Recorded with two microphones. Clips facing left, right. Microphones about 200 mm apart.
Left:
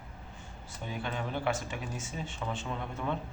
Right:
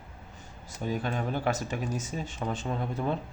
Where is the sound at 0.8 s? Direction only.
40° right (ahead or behind).